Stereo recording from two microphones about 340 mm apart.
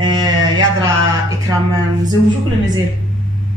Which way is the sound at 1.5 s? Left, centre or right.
Centre.